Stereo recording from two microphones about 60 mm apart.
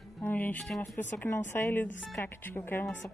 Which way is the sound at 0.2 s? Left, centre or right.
Left.